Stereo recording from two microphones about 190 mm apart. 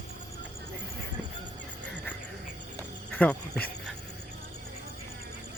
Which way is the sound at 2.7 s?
10° left (ahead or behind).